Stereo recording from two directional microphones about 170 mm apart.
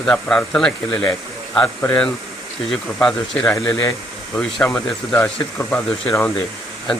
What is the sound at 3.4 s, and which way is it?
Speech, 20° left (ahead or behind).